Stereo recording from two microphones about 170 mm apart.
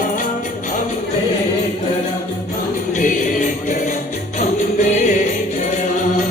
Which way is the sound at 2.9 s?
50° left (ahead or behind).